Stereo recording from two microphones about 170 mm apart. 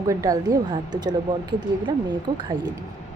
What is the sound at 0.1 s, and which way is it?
Speech, 20° right (ahead or behind).